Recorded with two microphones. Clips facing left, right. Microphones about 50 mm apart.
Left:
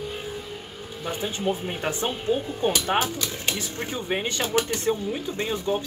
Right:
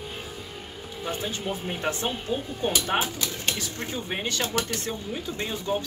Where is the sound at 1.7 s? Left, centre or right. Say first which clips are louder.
Left 1 dB; centre.